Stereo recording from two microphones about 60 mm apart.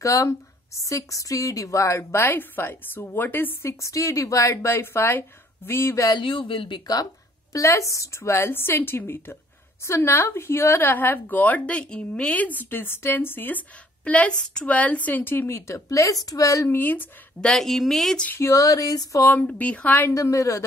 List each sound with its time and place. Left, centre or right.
0.0 s a woman's voice: left
2.2 s a woman's voice: left
3.6 s a woman's voice: left
4.6 s a woman's voice: left
7.5 s a woman's voice: left
15.4 s a woman's voice: left
16.6 s a woman's voice: left
17.4 s a woman's voice: centre
18.4 s a sound: left
19.2 s a woman's voice: left
20.2 s a woman's voice: left